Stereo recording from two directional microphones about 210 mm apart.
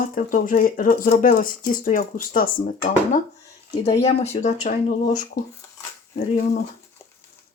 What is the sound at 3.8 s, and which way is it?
Speech, 30° left (ahead or behind).